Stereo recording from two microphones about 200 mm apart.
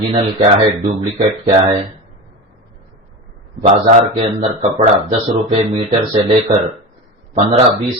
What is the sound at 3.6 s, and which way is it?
Speech, 30° right (ahead or behind).